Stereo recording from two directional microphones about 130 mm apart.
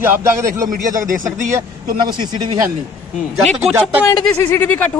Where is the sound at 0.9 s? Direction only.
90° right.